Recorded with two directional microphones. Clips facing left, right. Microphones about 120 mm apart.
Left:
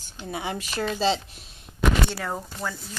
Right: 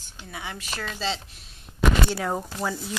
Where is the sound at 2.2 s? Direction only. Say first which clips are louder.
Right 3 dB; 10° right (ahead or behind).